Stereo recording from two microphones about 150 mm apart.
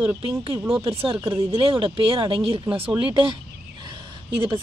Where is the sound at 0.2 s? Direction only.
35° right (ahead or behind).